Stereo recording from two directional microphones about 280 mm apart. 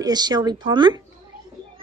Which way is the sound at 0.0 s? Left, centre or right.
Centre.